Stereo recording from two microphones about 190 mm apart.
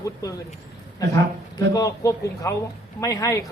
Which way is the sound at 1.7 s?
20° left (ahead or behind).